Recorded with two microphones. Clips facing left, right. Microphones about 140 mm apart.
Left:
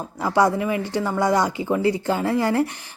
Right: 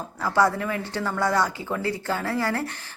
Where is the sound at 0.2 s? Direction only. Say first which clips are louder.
Left 3 dB; 15° left (ahead or behind).